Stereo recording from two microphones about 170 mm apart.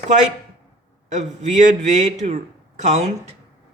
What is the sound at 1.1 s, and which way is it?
Speech, 45° right (ahead or behind).